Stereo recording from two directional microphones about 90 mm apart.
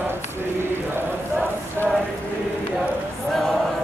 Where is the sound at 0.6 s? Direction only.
25° right (ahead or behind).